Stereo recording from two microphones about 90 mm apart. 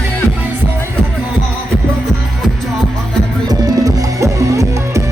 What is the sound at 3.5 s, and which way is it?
Music, 45° right (ahead or behind).